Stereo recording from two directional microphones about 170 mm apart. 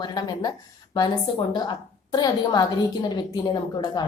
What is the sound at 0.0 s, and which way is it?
Speech, 25° left (ahead or behind).